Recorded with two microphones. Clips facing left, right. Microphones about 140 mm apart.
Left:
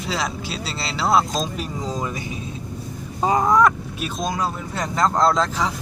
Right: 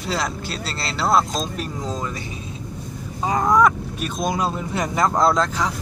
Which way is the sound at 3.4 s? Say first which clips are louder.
Right 3 dB; centre (ahead or behind).